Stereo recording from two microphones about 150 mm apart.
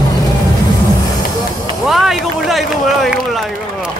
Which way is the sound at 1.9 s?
Centre (ahead or behind).